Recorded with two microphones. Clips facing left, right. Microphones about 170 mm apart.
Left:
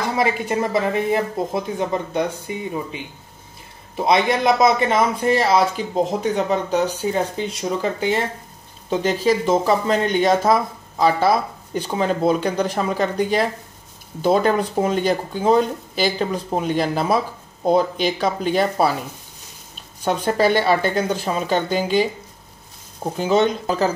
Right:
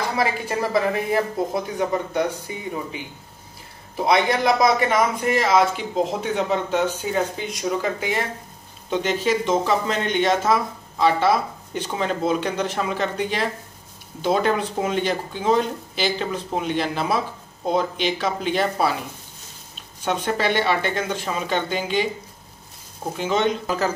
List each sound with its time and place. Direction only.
0.2 s speech: 20° left (ahead or behind)
4.0 s speech: 25° left (ahead or behind); by 18.9 s 40° left (ahead or behind)
20.1 s speech: 40° left (ahead or behind)
23.1 s speech: 35° left (ahead or behind)